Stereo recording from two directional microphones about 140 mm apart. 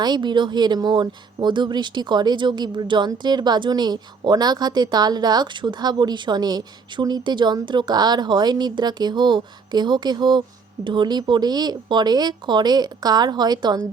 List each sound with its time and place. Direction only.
0.0 s speech: 30° right (ahead or behind)